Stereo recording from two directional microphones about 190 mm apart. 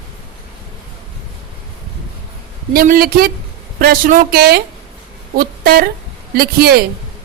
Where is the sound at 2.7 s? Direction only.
50° right (ahead or behind).